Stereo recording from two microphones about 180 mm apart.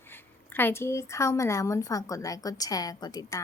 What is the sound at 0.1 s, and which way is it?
A woman's voice, 10° left (ahead or behind).